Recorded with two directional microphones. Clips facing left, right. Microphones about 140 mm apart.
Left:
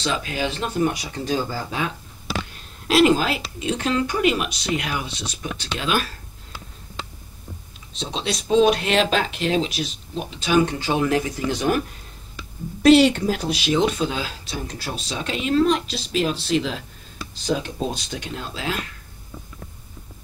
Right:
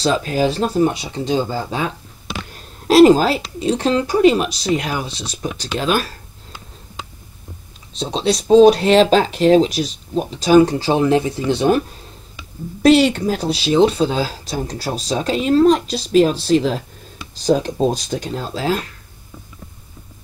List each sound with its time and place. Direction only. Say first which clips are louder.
0.0 s speech: right 8 dB; 40° right (ahead or behind)
2.5 s a sound: right 8 dB; 40° right (ahead or behind)
3.5 s speech: right 4 dB; 35° right (ahead or behind)
7.9 s speech: right 8 dB; 35° right (ahead or behind)
12.8 s speech: right 1 dB; 35° right (ahead or behind)